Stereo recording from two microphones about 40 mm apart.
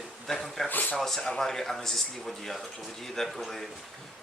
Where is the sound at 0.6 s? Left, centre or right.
Left.